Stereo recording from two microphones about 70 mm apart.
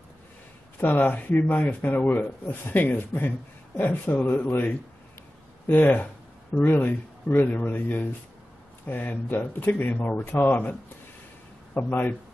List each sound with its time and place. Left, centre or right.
0.7 s speech: left